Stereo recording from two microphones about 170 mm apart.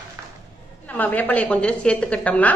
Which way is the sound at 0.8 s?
10° left (ahead or behind).